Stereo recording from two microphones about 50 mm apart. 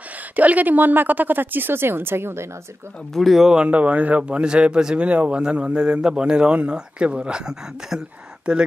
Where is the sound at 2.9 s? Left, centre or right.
Centre.